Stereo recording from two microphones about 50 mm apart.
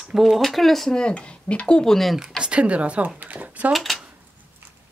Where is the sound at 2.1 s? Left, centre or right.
Centre.